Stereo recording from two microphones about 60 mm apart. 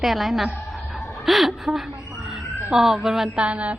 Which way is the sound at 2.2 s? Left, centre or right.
Centre.